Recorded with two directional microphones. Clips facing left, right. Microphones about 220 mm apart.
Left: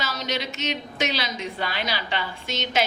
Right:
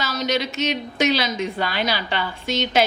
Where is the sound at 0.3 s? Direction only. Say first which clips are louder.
Right 7 dB; 40° right (ahead or behind).